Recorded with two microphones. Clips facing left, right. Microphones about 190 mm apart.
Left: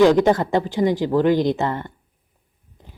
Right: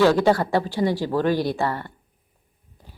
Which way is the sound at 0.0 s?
20° left (ahead or behind).